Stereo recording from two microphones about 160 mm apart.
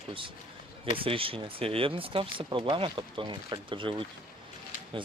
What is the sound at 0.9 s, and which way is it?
Speech, 35° right (ahead or behind).